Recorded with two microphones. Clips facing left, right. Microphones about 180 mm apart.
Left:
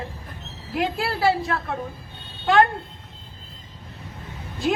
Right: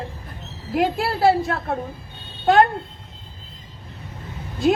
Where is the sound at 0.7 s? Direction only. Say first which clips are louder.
Right 4 dB; 55° right (ahead or behind).